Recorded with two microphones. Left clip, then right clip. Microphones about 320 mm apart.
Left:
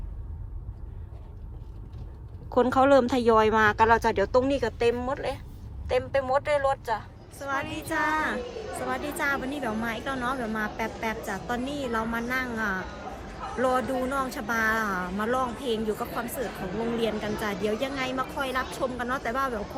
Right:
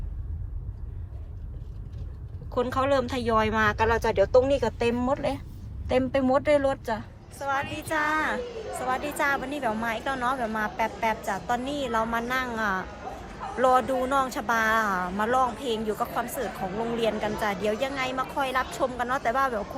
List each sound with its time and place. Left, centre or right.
2.5 s a woman's voice: centre